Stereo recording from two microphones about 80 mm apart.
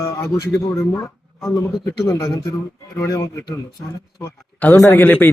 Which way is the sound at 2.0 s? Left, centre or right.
Left.